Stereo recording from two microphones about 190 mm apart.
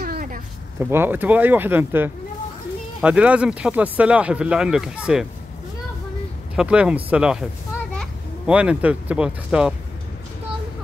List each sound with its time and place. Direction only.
0.0 s a sound: 50° right (ahead or behind)
0.7 s speech: 10° right (ahead or behind)
6.5 s speech: 5° right (ahead or behind)
8.5 s speech: 5° right (ahead or behind)